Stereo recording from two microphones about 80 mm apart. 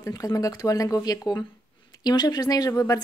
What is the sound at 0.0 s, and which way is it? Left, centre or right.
A woman's voice, left.